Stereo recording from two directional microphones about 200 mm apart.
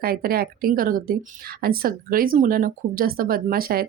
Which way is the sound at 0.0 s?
50° right (ahead or behind).